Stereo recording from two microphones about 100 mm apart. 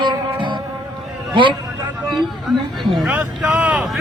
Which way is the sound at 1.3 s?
55° right (ahead or behind).